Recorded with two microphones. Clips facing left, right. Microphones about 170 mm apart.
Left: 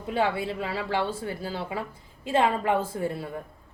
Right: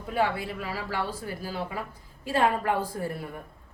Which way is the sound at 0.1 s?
25° left (ahead or behind).